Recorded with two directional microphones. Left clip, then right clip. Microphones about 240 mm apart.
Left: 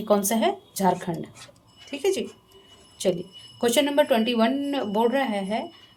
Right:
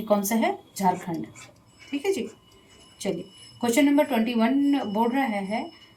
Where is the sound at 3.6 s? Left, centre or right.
Left.